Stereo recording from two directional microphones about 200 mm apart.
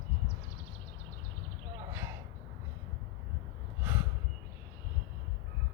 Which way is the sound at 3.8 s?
10° right (ahead or behind).